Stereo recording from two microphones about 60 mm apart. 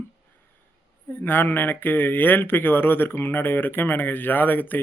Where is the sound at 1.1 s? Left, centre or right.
Left.